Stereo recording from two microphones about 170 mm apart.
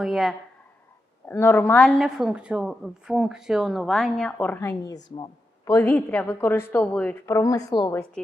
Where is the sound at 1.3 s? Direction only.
10° left (ahead or behind).